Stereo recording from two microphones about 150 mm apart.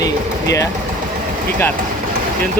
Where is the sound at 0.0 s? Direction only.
20° left (ahead or behind).